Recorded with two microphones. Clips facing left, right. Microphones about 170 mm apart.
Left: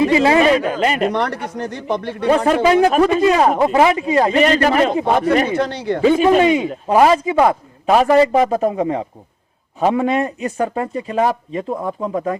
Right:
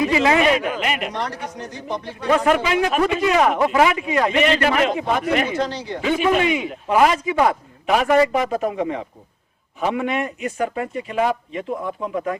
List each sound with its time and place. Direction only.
0.0 s a man's voice: 30° left (ahead or behind)
1.1 s speech: 60° left (ahead or behind)
2.2 s a man's voice: 35° left (ahead or behind)
5.5 s speech: 60° left (ahead or behind)
6.0 s a man's voice: 35° left (ahead or behind)